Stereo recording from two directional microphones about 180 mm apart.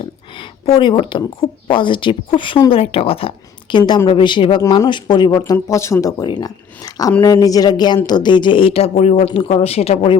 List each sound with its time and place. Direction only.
0.6 s speech: 25° left (ahead or behind)